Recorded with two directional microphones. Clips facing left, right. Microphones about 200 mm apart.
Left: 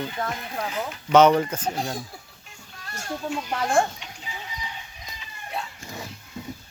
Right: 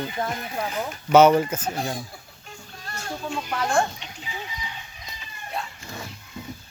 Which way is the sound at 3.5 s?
25° left (ahead or behind).